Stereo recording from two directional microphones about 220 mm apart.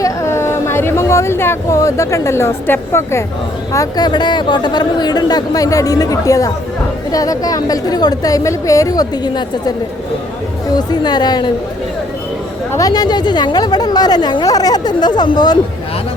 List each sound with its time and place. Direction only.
0.0 s speech: 10° left (ahead or behind)
10.8 s speech: 20° left (ahead or behind)
12.7 s speech: 15° left (ahead or behind)